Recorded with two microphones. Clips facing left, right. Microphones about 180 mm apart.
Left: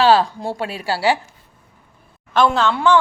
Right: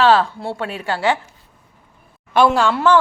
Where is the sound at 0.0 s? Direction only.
35° left (ahead or behind).